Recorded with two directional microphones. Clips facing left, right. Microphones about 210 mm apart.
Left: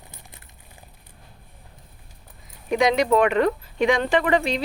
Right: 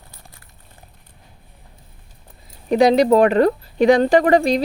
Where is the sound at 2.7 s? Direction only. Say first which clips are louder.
Right 6 dB; 35° right (ahead or behind).